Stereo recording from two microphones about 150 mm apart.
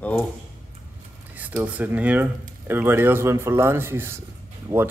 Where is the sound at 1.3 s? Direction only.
10° right (ahead or behind).